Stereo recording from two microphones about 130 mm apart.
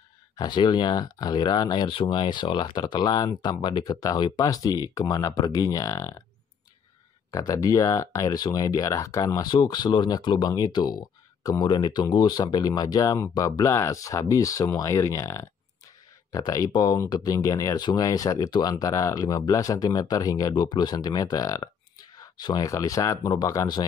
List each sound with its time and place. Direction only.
0.4 s speech: 35° left (ahead or behind)
7.2 s speech: 25° left (ahead or behind)